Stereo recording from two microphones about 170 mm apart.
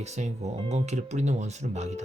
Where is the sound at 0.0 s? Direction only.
40° right (ahead or behind).